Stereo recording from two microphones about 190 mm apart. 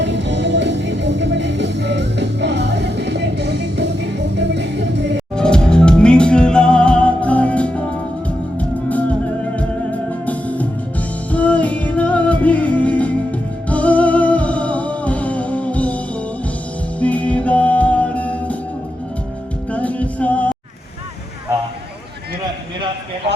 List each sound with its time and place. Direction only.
0.0 s music: 70° right (ahead or behind)
5.3 s music: 5° left (ahead or behind)
17.0 s music: 5° left (ahead or behind)
19.7 s music: 5° left (ahead or behind)